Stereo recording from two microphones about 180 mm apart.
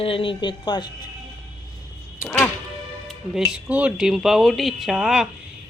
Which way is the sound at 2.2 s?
5° left (ahead or behind).